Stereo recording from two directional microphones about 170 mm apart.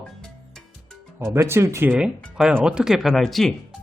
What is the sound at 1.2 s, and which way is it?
Speech, 15° right (ahead or behind).